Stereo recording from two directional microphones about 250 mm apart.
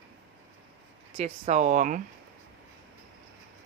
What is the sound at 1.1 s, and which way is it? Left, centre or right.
Speech, right.